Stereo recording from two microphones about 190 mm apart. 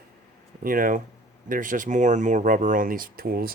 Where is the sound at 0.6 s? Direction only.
45° right (ahead or behind).